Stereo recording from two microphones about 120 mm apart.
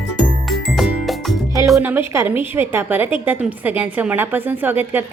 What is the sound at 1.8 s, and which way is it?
A woman's voice, 20° right (ahead or behind).